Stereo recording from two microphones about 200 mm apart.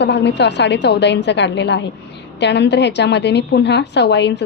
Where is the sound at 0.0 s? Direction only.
60° left (ahead or behind).